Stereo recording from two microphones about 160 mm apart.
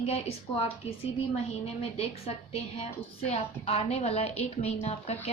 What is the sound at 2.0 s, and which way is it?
A woman's voice, 40° left (ahead or behind).